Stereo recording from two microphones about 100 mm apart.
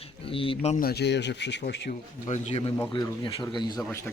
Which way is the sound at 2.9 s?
45° left (ahead or behind).